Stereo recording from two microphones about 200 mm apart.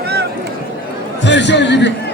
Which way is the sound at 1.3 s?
60° left (ahead or behind).